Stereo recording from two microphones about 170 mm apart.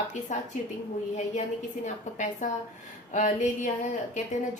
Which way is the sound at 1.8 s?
45° left (ahead or behind).